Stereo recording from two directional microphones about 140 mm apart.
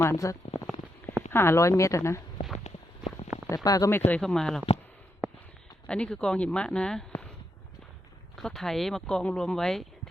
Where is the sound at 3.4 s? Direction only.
25° left (ahead or behind).